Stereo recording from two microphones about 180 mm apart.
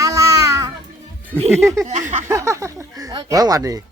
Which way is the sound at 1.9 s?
40° right (ahead or behind).